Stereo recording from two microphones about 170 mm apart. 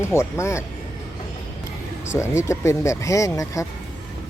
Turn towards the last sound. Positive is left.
turn(degrees=20)  # may be behind; listen again after turning